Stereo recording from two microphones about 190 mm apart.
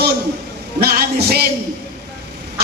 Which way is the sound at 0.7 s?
55° right (ahead or behind).